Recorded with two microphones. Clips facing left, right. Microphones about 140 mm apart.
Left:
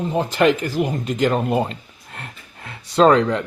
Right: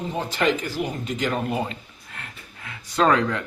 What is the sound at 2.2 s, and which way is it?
Speech, 35° left (ahead or behind).